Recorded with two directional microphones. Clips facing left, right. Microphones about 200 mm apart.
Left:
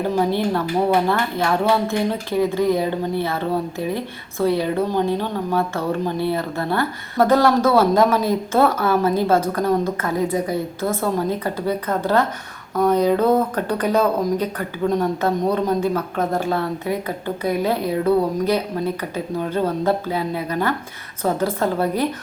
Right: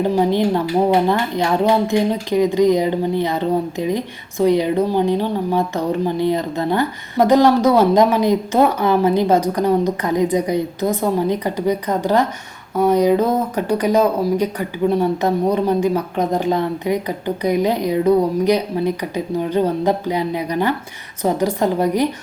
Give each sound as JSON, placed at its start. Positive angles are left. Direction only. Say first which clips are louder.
{"t": 1.0, "sound": "speech", "louder": "right 2 dB", "side_deg": -15}